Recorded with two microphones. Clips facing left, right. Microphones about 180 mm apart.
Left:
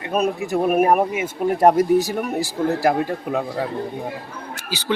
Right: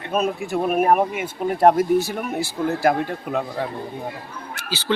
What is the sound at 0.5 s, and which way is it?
Speech, 5° left (ahead or behind).